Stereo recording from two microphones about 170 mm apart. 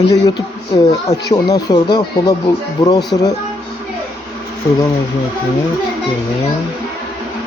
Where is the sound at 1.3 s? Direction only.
20° left (ahead or behind).